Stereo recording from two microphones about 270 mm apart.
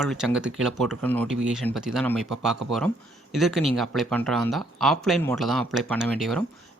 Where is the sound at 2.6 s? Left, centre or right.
Right.